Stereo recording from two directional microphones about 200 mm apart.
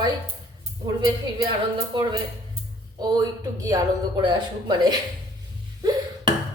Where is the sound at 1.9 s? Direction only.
25° right (ahead or behind).